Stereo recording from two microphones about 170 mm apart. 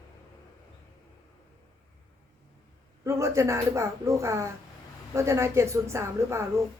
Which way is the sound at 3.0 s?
15° right (ahead or behind).